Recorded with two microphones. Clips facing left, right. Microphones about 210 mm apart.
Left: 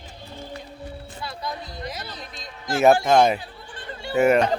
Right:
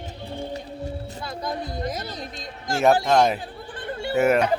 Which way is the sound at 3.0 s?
Centre (ahead or behind).